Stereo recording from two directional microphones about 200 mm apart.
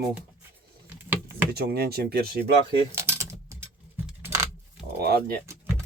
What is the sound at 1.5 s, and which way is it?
Speech, 50° right (ahead or behind).